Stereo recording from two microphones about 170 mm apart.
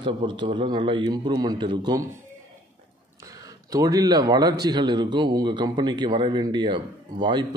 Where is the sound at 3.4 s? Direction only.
20° right (ahead or behind).